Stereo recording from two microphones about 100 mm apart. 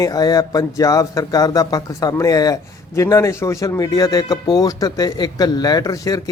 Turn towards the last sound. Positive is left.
turn(degrees=35)  # may be behind; listen again after turning